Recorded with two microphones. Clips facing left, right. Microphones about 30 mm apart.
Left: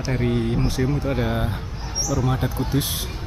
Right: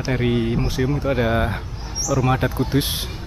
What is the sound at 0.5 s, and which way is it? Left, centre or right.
Speech, centre.